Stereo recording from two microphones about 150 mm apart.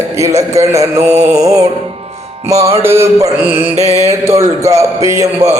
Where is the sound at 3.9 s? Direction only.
45° right (ahead or behind).